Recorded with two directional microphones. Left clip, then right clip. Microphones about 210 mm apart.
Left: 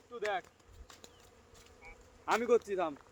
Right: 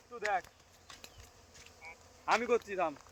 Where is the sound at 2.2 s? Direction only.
55° left (ahead or behind).